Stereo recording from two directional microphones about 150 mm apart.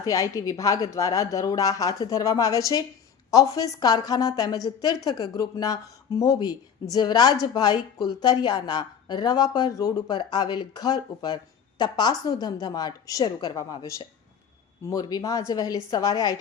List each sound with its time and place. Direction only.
0.0 s a woman's voice: 25° left (ahead or behind)